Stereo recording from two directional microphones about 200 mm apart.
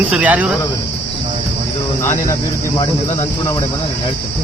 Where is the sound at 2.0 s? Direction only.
15° left (ahead or behind).